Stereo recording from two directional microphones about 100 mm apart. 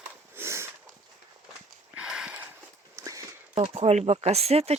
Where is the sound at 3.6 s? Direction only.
90° right.